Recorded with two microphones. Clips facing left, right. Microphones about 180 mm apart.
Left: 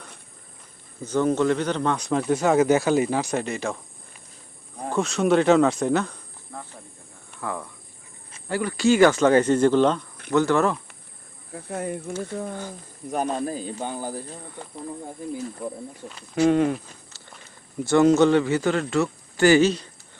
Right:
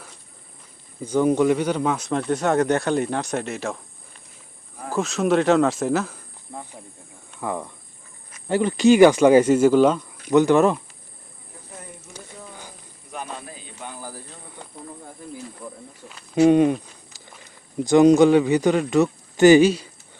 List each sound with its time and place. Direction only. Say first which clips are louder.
1.0 s speech: right 3 dB; 10° right (ahead or behind)
4.9 s speech: even; centre (ahead or behind)
6.5 s speech: right 2 dB; 15° right (ahead or behind)
11.5 s speech: left 13 dB; 70° left (ahead or behind)
13.1 s speech: left 9 dB; 45° left (ahead or behind); by 14.2 s 25° left (ahead or behind)
15.6 s speech: left 6 dB; 20° left (ahead or behind)
16.3 s speech: right 4 dB; 20° right (ahead or behind)
17.7 s speech: right 3 dB; 15° right (ahead or behind)